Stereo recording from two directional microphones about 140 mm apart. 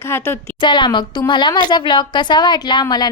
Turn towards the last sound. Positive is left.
turn(degrees=30)  # may be behind; listen again after turning